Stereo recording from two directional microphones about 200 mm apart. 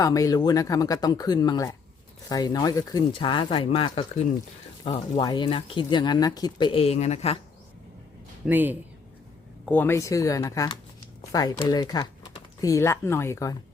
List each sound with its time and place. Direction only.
0.0 s speech: 15° left (ahead or behind); by 7.3 s 35° left (ahead or behind)
8.4 s speech: 10° right (ahead or behind)
9.6 s speech: 10° left (ahead or behind)